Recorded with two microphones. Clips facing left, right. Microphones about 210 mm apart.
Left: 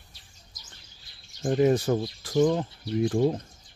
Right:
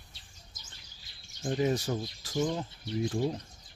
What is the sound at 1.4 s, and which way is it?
Speech, 55° left (ahead or behind).